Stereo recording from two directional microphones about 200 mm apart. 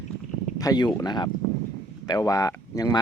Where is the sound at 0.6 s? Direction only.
20° left (ahead or behind).